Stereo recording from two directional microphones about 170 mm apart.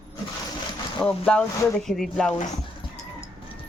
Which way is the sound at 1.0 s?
5° left (ahead or behind).